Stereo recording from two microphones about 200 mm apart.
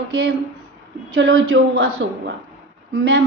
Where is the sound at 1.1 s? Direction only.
80° right.